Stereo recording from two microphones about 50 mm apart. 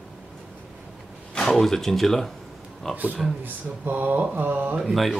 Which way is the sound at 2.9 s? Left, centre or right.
Right.